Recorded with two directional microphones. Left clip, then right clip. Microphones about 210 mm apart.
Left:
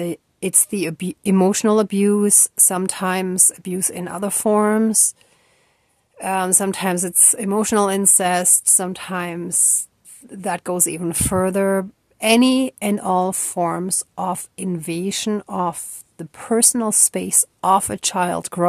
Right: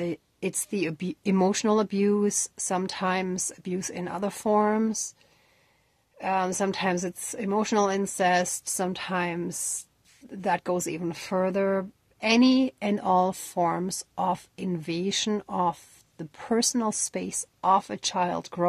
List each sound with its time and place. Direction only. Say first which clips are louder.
0.0 s a woman's voice: left 6 dB; 30° left (ahead or behind)
6.1 s a woman's voice: left 6 dB; 35° left (ahead or behind)